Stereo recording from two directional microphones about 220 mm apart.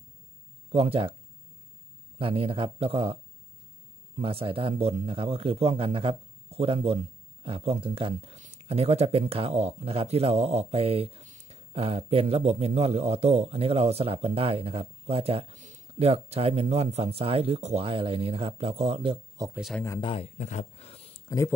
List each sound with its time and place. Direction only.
0.7 s speech: 25° right (ahead or behind)
2.1 s a man's voice: 25° right (ahead or behind)
4.2 s a man's voice: 25° right (ahead or behind)
19.8 s speech: 20° left (ahead or behind)